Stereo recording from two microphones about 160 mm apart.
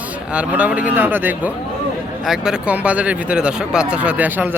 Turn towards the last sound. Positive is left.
turn(degrees=-10)  # may be behind; listen again after turning